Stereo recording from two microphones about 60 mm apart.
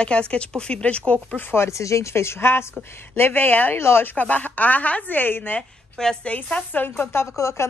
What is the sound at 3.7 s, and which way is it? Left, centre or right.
Speech, left.